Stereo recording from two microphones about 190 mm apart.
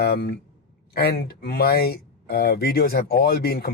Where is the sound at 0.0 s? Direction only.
55° left (ahead or behind).